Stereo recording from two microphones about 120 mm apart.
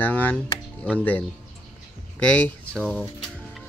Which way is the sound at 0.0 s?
15° left (ahead or behind).